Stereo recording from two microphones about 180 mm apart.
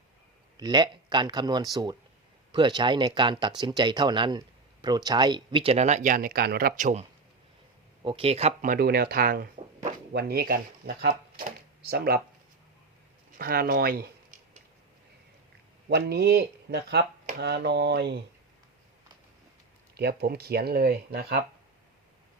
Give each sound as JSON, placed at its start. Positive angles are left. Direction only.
{"t": 0.5, "sound": "speech", "side_deg": -25}
{"t": 8.0, "sound": "speech", "side_deg": -30}
{"t": 8.7, "sound": "speech", "side_deg": -60}
{"t": 13.3, "sound": "speech", "side_deg": -55}
{"t": 15.9, "sound": "speech", "side_deg": -65}
{"t": 20.0, "sound": "speech", "side_deg": -65}